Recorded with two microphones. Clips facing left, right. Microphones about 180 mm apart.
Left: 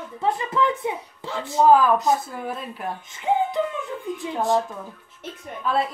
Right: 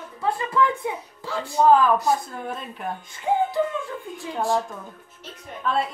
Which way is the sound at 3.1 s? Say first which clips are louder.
Even; 20° left (ahead or behind).